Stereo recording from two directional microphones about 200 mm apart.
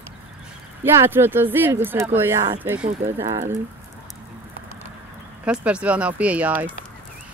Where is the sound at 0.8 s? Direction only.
10° right (ahead or behind).